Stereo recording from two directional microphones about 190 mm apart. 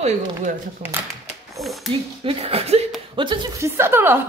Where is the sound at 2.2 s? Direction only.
30° right (ahead or behind).